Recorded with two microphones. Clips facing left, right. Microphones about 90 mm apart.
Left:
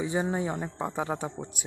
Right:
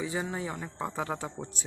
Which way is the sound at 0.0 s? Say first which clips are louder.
Left 5 dB; 25° left (ahead or behind).